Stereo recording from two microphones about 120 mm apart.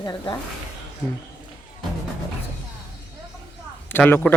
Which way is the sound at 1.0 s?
15° left (ahead or behind).